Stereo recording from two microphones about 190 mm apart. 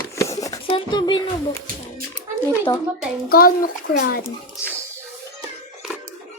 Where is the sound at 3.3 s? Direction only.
50° left (ahead or behind).